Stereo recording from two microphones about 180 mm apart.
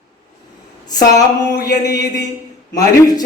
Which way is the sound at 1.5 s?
20° left (ahead or behind).